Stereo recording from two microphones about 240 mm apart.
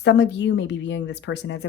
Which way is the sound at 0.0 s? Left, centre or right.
Left.